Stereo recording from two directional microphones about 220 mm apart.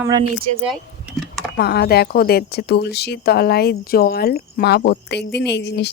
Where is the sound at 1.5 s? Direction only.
45° left (ahead or behind).